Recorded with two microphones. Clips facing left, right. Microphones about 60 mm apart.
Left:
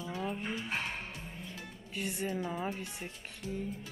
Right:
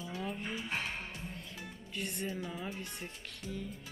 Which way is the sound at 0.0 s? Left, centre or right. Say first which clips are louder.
Left 2 dB; centre.